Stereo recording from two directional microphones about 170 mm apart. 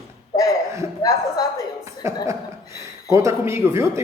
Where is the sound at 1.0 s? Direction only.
20° left (ahead or behind).